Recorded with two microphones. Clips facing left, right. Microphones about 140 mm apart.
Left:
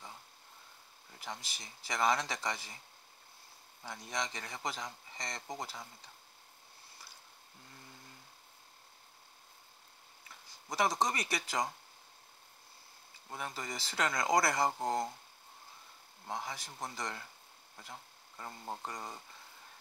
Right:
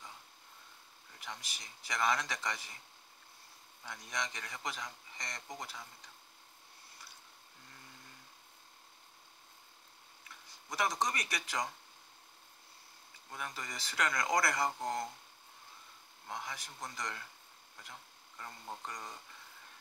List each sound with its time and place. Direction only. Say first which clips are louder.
1.2 s speech: left 3 dB; 30° left (ahead or behind)
3.8 s a man's voice: left 2 dB; 30° left (ahead or behind)
10.7 s a man's voice: left 3 dB; 30° left (ahead or behind)
13.3 s a man's voice: left 3 dB; 30° left (ahead or behind)
16.3 s a man's voice: left 3 dB; 30° left (ahead or behind)
18.4 s a man's voice: left 3 dB; 25° left (ahead or behind)